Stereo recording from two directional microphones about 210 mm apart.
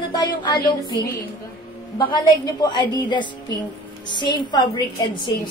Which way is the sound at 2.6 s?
20° left (ahead or behind).